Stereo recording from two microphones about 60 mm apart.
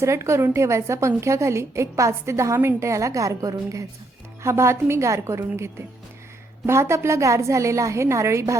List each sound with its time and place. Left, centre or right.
0.0 s a woman's voice: right
4.4 s a woman's voice: right
6.7 s a woman's voice: right